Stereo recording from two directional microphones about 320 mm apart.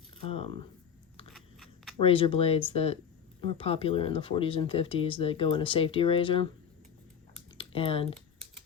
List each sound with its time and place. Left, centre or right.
0.2 s speech: centre
1.3 s biting: centre
2.0 s speech: centre
7.6 s speech: centre